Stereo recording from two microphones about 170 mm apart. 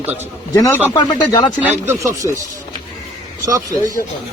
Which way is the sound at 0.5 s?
15° left (ahead or behind).